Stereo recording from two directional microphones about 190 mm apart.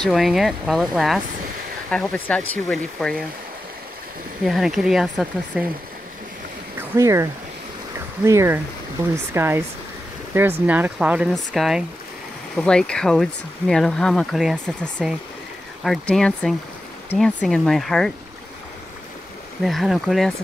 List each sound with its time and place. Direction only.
0.0 s speech: centre (ahead or behind)
4.4 s speech: centre (ahead or behind)
7.0 s speech: 15° right (ahead or behind); by 18.1 s centre (ahead or behind)
19.6 s speech: centre (ahead or behind)